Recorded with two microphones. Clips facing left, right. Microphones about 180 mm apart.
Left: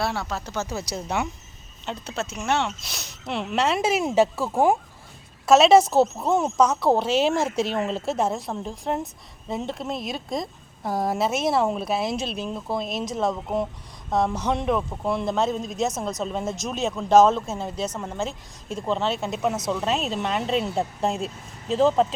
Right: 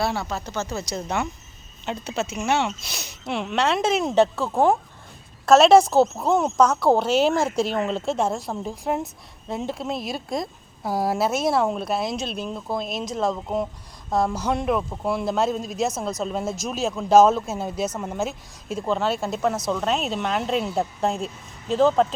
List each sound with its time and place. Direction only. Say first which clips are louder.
0.0 s speech: right 2 dB; centre (ahead or behind)